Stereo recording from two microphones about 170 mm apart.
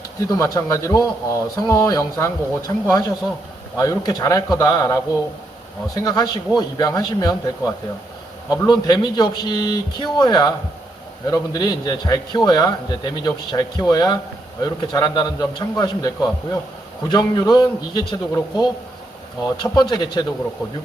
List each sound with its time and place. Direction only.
0.2 s speech: 20° left (ahead or behind)